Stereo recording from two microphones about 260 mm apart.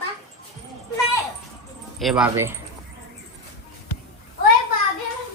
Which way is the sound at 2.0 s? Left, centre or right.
Centre.